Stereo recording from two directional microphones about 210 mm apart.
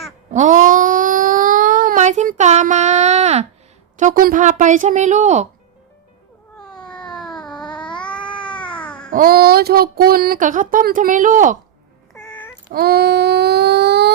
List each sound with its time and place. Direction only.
0.3 s a sound: 35° right (ahead or behind)
3.9 s speech: 40° right (ahead or behind)
6.6 s cat: 5° left (ahead or behind)
9.0 s speech: 40° right (ahead or behind)
12.1 s cat: 5° left (ahead or behind)
12.7 s a sound: 50° right (ahead or behind)